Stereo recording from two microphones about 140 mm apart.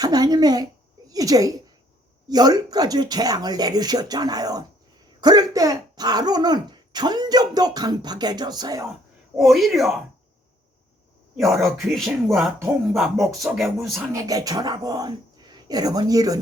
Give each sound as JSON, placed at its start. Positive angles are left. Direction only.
{"t": 0.0, "sound": "a woman's voice", "side_deg": -30}
{"t": 9.4, "sound": "speech", "side_deg": 0}
{"t": 11.3, "sound": "speech", "side_deg": 0}
{"t": 14.1, "sound": "speech", "side_deg": -25}